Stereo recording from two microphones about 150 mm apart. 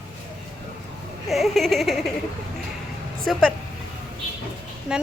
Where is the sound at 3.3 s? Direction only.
Centre (ahead or behind).